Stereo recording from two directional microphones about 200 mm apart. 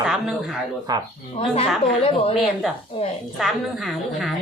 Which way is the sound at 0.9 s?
20° right (ahead or behind).